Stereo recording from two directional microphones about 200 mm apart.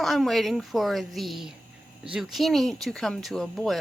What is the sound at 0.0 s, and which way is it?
Speech, centre (ahead or behind).